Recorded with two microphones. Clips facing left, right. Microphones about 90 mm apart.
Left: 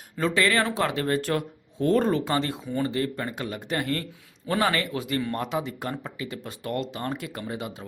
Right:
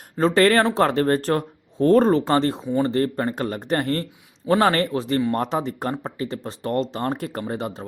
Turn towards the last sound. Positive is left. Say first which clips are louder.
# right 6 dB
turn(degrees=-40)  # may be behind; listen again after turning